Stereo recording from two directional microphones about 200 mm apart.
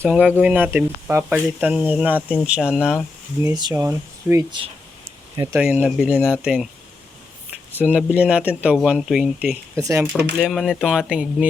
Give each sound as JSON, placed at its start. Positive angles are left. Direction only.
{"t": 0.0, "sound": "speech", "side_deg": -10}
{"t": 3.4, "sound": "speech", "side_deg": -20}
{"t": 7.8, "sound": "speech", "side_deg": -5}
{"t": 9.7, "sound": "speech", "side_deg": -15}
{"t": 10.4, "sound": "speech", "side_deg": 0}